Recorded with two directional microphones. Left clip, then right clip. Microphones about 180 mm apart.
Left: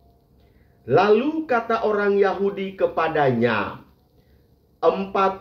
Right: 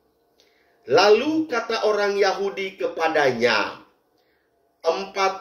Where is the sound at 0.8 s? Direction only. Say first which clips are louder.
Right 1 dB; 20° right (ahead or behind).